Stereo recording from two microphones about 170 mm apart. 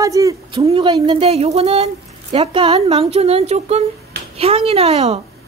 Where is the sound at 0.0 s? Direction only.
20° right (ahead or behind).